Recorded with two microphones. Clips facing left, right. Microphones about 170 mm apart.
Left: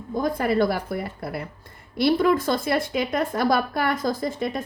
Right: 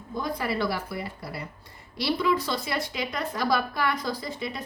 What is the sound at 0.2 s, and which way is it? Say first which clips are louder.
A woman's voice: left 7 dB; 50° left (ahead or behind).